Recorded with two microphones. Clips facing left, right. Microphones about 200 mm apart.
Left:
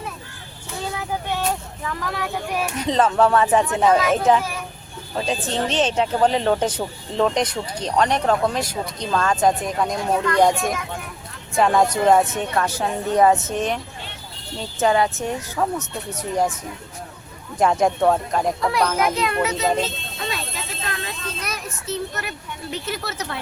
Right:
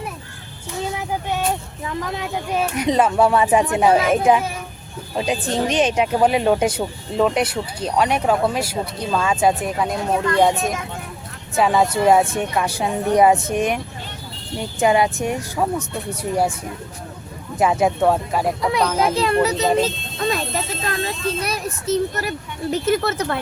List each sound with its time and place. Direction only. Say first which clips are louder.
0.9 s speech: left 1 dB; 20° right (ahead or behind)
10.1 s speech: right 1 dB; 25° right (ahead or behind)
11.5 s speech: even; 5° right (ahead or behind)
17.6 s speech: right 1 dB; 5° right (ahead or behind)
18.9 s speech: right 3 dB; 30° right (ahead or behind); by 23.4 s 55° right (ahead or behind)